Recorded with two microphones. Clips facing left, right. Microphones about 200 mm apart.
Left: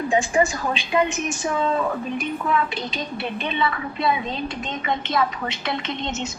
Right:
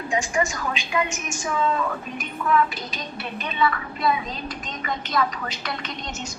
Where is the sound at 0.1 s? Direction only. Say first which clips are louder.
Left 3 dB; 35° left (ahead or behind).